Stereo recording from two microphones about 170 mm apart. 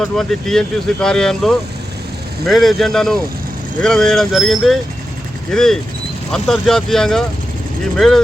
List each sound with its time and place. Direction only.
0.0 s speech: centre (ahead or behind)